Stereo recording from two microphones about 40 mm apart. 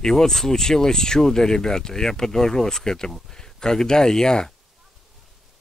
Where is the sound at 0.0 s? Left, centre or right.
Centre.